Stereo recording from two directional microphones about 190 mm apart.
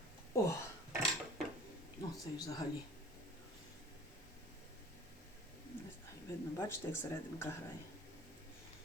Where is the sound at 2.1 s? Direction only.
20° left (ahead or behind).